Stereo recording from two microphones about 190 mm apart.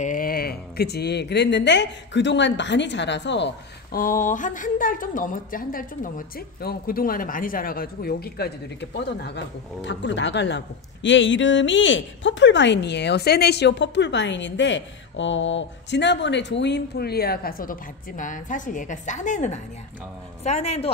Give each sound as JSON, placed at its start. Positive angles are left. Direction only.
{"t": 0.0, "sound": "speech", "side_deg": 45}
{"t": 4.0, "sound": "a woman's voice", "side_deg": 45}
{"t": 8.9, "sound": "a woman's voice", "side_deg": 65}